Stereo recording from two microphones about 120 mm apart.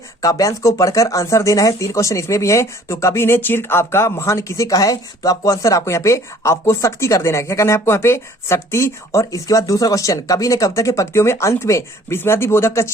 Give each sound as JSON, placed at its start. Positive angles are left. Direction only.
{"t": 0.2, "sound": "speech", "side_deg": 30}